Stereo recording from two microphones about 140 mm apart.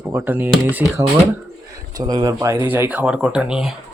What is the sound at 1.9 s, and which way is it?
Speech, 25° right (ahead or behind).